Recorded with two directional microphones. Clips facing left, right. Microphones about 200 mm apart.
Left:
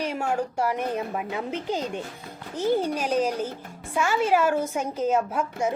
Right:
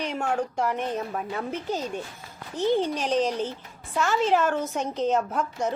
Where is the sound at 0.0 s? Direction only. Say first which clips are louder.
Left 1 dB; 10° left (ahead or behind).